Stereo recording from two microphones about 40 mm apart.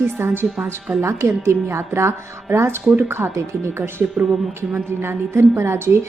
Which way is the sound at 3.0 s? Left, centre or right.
Right.